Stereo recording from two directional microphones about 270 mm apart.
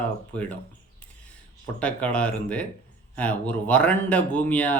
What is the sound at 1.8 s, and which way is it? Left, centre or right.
Speech, centre.